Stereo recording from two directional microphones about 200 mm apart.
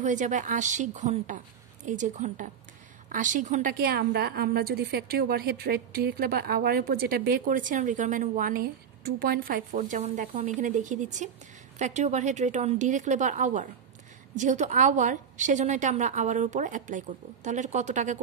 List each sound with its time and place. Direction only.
0.0 s a woman's voice: 40° right (ahead or behind)